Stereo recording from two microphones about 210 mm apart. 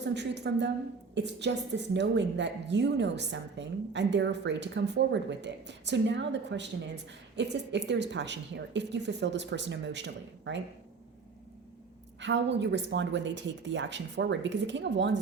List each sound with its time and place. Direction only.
0.0 s a woman's voice: 55° right (ahead or behind)
12.2 s a woman's voice: 55° right (ahead or behind)